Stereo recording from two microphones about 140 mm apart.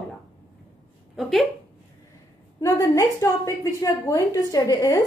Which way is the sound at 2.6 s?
20° left (ahead or behind).